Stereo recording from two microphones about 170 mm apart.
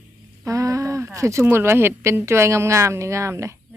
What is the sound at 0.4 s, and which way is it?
Speech, 20° right (ahead or behind).